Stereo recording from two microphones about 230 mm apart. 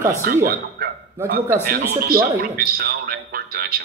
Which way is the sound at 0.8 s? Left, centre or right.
Right.